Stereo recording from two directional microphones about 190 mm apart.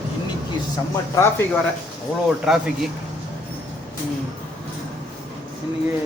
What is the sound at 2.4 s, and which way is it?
Speech, centre (ahead or behind).